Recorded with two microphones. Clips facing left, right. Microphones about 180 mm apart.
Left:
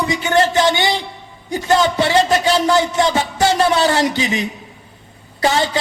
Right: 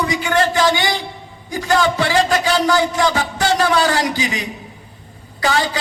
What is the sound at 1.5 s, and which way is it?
A man's voice, 25° left (ahead or behind).